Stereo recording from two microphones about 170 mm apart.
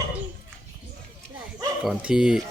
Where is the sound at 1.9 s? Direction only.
5° right (ahead or behind).